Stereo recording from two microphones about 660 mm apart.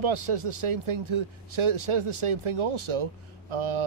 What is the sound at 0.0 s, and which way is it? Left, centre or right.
Speech, right.